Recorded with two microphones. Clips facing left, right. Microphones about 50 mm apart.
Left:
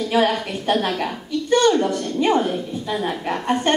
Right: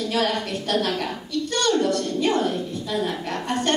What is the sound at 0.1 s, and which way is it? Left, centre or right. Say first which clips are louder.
A woman's voice: left 6 dB; centre.